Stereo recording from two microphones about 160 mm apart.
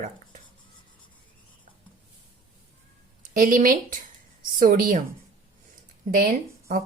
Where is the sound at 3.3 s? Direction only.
55° right (ahead or behind).